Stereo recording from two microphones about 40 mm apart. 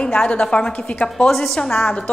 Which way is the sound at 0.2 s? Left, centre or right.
Left.